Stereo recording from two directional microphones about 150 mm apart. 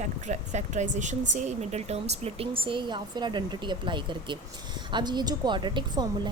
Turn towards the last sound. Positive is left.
turn(degrees=-30)  # may be behind; listen again after turning